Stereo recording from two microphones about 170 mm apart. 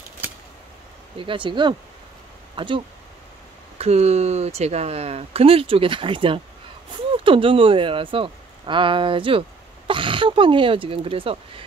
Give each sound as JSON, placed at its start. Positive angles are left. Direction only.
{"t": 1.1, "sound": "speech", "side_deg": -30}